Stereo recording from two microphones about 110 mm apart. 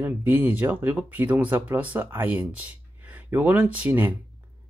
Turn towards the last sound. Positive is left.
turn(degrees=-15)  # may be behind; listen again after turning